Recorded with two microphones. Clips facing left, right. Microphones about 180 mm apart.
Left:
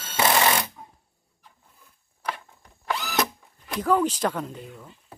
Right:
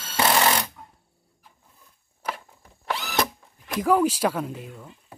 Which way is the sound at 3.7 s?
10° right (ahead or behind).